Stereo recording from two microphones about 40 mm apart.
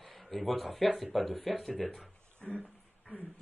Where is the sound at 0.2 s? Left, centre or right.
Centre.